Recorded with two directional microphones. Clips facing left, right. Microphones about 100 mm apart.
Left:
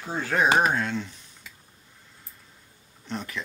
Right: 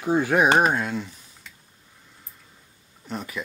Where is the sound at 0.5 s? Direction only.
10° right (ahead or behind).